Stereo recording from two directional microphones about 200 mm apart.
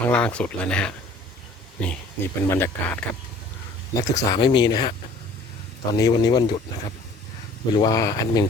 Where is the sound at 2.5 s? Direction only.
10° left (ahead or behind).